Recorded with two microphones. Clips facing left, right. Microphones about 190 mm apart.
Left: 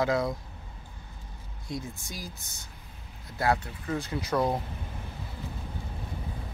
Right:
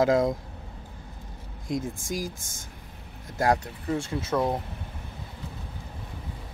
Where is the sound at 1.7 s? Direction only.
50° right (ahead or behind).